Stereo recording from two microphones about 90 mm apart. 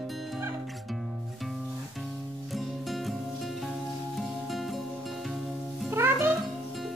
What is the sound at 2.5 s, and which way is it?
Music, centre (ahead or behind).